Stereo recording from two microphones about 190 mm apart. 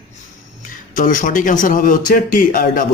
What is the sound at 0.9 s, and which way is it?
Speech, 45° left (ahead or behind).